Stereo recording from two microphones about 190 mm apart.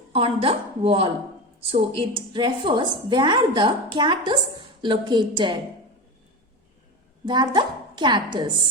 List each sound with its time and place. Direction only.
0.1 s a woman's voice: 30° right (ahead or behind)
7.3 s a woman's voice: 25° right (ahead or behind)